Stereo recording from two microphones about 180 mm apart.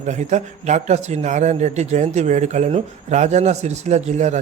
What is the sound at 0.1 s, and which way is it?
A man's voice, 40° right (ahead or behind).